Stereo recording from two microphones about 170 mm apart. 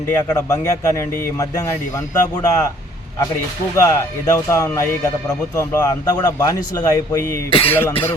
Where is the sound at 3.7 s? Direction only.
20° left (ahead or behind).